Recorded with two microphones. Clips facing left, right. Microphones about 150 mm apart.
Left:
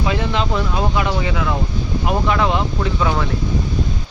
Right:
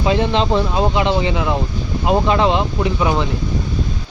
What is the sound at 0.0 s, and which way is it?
Speech, 25° right (ahead or behind).